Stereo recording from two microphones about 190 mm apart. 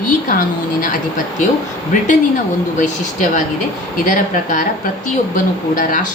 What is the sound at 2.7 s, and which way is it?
Speech, 40° left (ahead or behind).